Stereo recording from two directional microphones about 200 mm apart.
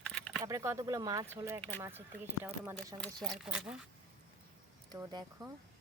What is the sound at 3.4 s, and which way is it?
Speech, 5° right (ahead or behind).